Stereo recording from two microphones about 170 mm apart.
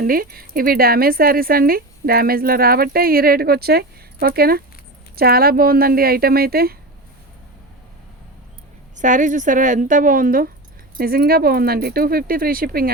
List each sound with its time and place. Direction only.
0.0 s speech: 60° right (ahead or behind)
9.0 s a woman's voice: 50° right (ahead or behind)